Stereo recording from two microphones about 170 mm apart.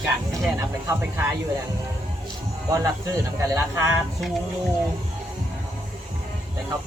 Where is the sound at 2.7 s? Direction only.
20° right (ahead or behind).